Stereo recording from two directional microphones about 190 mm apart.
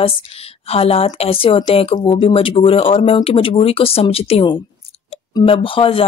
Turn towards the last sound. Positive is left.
turn(degrees=30)  # may be behind; listen again after turning